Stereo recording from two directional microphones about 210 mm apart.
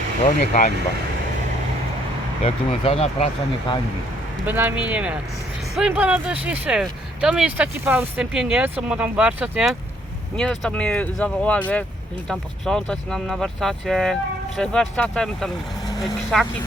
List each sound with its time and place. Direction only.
0.3 s speech: 35° left (ahead or behind)
2.4 s speech: 30° left (ahead or behind)
4.4 s speech: 10° right (ahead or behind)